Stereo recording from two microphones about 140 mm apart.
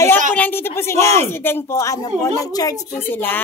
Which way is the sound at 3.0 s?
15° left (ahead or behind).